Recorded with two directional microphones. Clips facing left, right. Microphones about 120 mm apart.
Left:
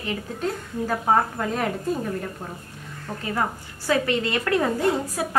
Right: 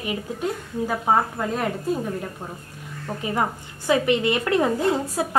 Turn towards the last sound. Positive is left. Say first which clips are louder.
# right 1 dB
turn(degrees=-25)  # may be behind; listen again after turning